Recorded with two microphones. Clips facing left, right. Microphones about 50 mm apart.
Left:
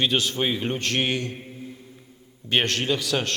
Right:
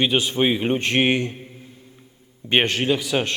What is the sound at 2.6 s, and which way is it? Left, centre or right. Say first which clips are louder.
Speech: right 3 dB; centre.